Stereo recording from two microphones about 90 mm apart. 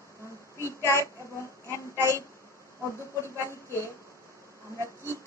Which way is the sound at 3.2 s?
30° right (ahead or behind).